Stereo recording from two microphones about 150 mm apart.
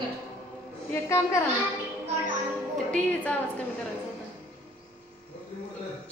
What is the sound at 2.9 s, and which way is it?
Speech, 10° left (ahead or behind).